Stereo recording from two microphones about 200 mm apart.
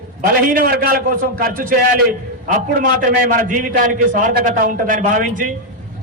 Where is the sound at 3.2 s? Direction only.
45° right (ahead or behind).